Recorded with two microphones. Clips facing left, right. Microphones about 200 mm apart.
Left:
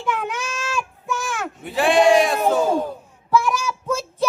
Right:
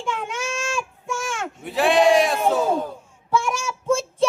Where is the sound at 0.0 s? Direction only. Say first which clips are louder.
Left 2 dB; 25° right (ahead or behind).